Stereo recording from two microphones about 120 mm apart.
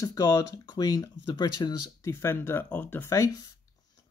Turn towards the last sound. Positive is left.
turn(degrees=30)  # may be behind; listen again after turning